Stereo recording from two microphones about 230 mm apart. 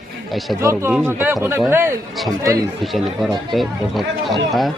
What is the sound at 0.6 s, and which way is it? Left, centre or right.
Speech, centre.